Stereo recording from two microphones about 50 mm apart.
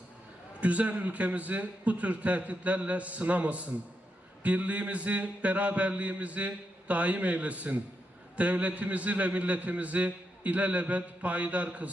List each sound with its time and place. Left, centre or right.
0.6 s a man's voice: right